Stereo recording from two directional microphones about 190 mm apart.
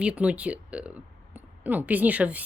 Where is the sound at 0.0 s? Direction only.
5° right (ahead or behind).